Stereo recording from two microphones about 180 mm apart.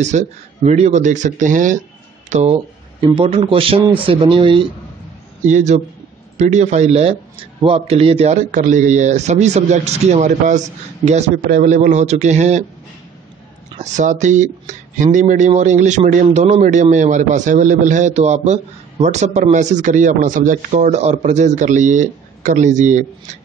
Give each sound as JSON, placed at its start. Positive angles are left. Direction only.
{"t": 0.0, "sound": "speech", "side_deg": -40}
{"t": 5.5, "sound": "speech", "side_deg": -40}
{"t": 13.7, "sound": "speech", "side_deg": -45}